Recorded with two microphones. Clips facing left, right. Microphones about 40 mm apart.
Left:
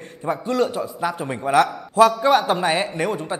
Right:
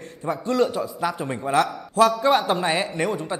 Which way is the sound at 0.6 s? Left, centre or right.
Centre.